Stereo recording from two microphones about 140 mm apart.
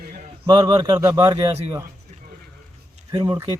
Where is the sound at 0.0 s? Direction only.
90° right.